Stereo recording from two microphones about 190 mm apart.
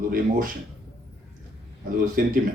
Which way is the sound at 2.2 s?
50° right (ahead or behind).